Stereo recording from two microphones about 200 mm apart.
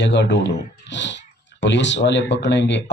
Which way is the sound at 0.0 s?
60° left (ahead or behind).